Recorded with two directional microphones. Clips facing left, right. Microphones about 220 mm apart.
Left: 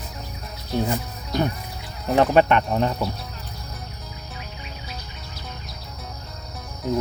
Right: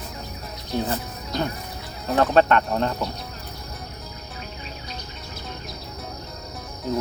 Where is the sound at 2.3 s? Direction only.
10° left (ahead or behind).